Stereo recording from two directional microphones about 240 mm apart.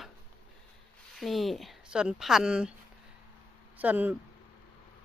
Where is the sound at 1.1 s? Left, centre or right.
Centre.